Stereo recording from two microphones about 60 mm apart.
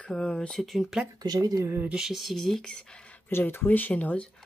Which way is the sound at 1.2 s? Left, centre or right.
Right.